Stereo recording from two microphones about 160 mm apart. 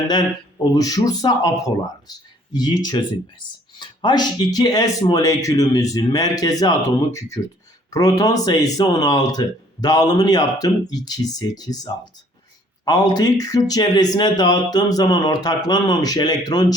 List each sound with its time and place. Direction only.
0.1 s speech: 25° left (ahead or behind)